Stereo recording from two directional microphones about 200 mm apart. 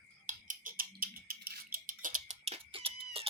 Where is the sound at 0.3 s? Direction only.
40° right (ahead or behind).